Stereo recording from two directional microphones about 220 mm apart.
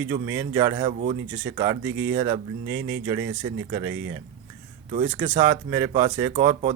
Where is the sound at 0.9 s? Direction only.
30° right (ahead or behind).